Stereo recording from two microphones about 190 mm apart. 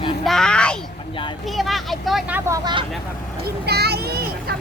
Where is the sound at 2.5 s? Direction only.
25° right (ahead or behind).